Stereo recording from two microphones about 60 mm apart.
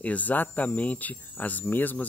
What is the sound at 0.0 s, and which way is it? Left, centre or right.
Speech, left.